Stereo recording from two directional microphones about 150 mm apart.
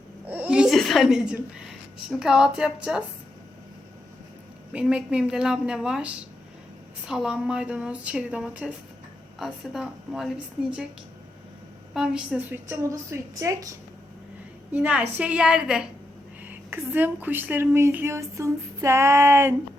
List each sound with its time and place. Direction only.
0.3 s a sound: 10° right (ahead or behind)
2.0 s a woman's voice: 5° right (ahead or behind)
4.7 s a woman's voice: 5° right (ahead or behind)
11.9 s a woman's voice: 5° right (ahead or behind); by 13.7 s 20° right (ahead or behind)
14.7 s a woman's voice: 10° right (ahead or behind)